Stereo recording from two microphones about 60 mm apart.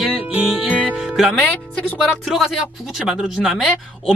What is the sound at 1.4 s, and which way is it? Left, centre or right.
Speech, left.